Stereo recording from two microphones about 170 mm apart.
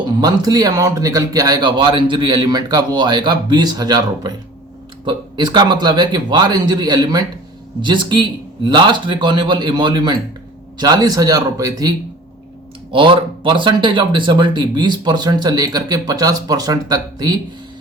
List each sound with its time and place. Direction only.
0.2 s speech: 20° right (ahead or behind)